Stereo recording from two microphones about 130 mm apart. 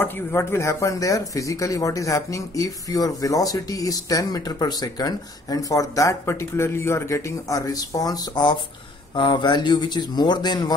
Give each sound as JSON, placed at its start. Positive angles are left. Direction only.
{"t": 0.0, "sound": "speech", "side_deg": 20}